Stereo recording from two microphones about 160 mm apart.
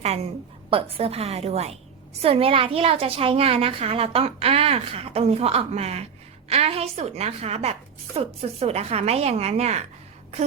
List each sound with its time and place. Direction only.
0.0 s a woman's voice: 45° right (ahead or behind)